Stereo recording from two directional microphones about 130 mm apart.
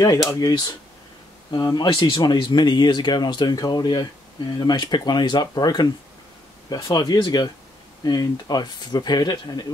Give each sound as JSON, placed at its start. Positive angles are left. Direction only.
{"t": 0.4, "sound": "speech", "side_deg": 30}